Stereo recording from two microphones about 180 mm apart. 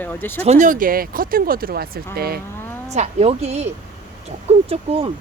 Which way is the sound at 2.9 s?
35° right (ahead or behind).